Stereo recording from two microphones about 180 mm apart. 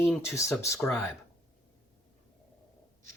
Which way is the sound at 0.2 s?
15° left (ahead or behind).